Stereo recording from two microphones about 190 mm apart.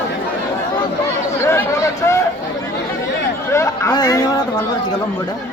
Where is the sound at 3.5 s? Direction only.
15° left (ahead or behind).